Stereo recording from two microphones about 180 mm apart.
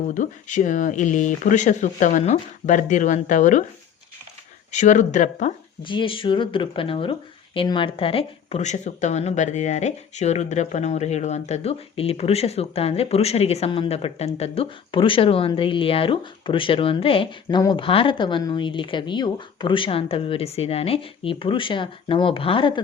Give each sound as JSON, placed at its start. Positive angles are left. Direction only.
{"t": 0.1, "sound": "speech", "side_deg": 45}
{"t": 4.7, "sound": "speech", "side_deg": 40}
{"t": 5.8, "sound": "speech", "side_deg": 25}